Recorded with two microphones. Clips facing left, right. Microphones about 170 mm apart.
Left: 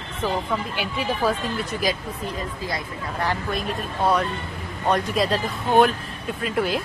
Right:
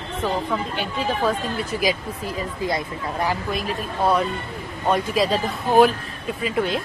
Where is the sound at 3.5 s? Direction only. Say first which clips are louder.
Right 1 dB; centre (ahead or behind).